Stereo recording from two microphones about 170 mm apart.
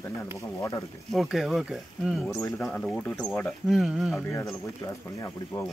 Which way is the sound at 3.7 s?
Centre (ahead or behind).